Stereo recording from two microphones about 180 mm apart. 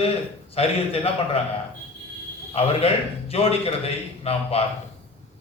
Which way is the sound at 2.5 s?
35° left (ahead or behind).